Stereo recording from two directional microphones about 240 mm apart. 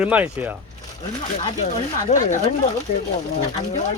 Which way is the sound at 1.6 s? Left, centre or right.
Left.